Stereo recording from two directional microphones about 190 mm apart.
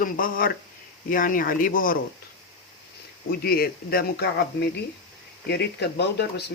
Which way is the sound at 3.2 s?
55° left (ahead or behind).